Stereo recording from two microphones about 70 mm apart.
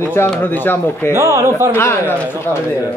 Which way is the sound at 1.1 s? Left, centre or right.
Right.